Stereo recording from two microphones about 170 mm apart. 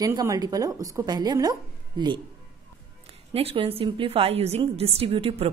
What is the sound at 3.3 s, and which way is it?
A woman's voice, 35° right (ahead or behind).